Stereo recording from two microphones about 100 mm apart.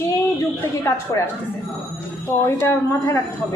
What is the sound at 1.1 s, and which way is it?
Speech, 40° left (ahead or behind).